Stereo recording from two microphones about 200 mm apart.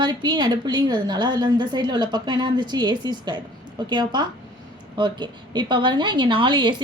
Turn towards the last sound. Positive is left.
turn(degrees=-25)  # may be behind; listen again after turning